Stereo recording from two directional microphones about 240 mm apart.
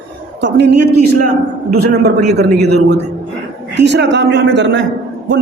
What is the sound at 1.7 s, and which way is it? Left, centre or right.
A man's voice, right.